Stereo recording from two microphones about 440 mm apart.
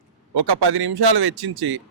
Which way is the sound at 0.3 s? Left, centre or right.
Right.